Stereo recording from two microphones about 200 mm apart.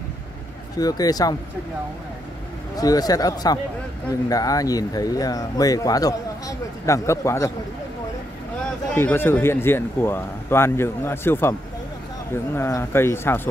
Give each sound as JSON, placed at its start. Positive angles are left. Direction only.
{"t": 0.7, "sound": "speech", "side_deg": 20}
{"t": 2.7, "sound": "speech", "side_deg": 20}
{"t": 8.6, "sound": "speech", "side_deg": 10}
{"t": 12.5, "sound": "speech", "side_deg": 15}